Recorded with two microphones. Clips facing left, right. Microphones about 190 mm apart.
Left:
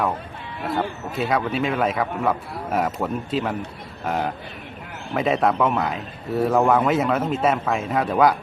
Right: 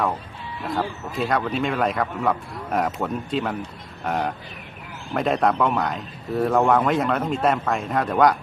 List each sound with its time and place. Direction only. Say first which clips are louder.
0.7 s a man's voice: left 1 dB; 5° left (ahead or behind)